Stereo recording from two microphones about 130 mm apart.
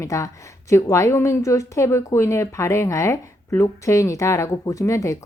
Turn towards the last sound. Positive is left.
turn(degrees=25)  # may be behind; listen again after turning